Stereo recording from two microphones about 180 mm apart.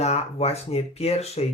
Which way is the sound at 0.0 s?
35° left (ahead or behind).